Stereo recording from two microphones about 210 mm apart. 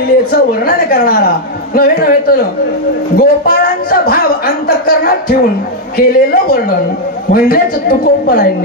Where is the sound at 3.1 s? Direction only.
45° left (ahead or behind).